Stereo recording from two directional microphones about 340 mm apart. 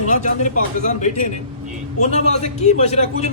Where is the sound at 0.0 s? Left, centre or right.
Left.